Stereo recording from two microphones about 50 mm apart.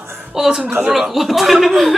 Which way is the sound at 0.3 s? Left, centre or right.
Centre.